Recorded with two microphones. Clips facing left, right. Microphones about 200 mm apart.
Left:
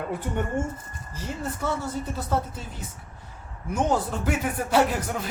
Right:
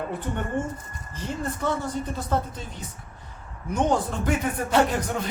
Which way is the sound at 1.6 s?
5° left (ahead or behind).